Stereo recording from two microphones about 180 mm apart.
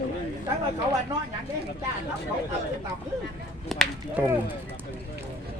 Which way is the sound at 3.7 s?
Centre (ahead or behind).